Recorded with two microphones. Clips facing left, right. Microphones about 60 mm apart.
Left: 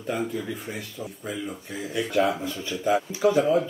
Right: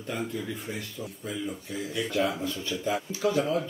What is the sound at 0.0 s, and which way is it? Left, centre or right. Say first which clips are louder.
Speech: left 4 dB; left.